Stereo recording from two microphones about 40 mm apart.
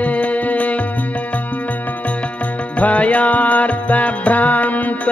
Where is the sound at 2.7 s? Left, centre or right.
Left.